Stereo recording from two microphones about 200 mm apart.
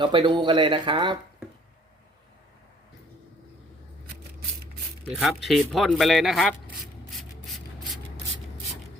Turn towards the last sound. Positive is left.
turn(degrees=0)  # may be behind; listen again after turning